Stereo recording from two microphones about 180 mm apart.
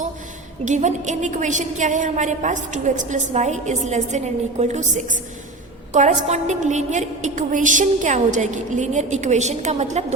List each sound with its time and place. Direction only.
0.6 s a woman's voice: 40° right (ahead or behind)